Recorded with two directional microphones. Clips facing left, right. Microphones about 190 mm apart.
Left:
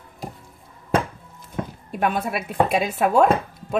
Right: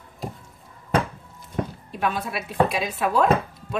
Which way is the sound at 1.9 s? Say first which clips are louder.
Left 6 dB; 50° left (ahead or behind).